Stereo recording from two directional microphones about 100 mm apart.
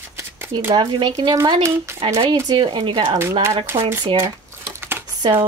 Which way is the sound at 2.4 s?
45° right (ahead or behind).